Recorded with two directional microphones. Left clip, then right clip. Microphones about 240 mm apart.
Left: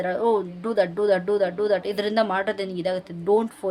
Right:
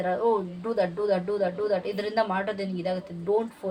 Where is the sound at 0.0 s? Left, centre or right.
Left.